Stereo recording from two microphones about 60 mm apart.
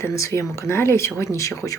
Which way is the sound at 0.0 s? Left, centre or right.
Left.